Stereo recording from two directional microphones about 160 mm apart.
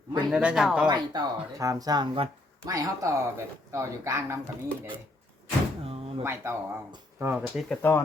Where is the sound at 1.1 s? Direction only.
25° right (ahead or behind).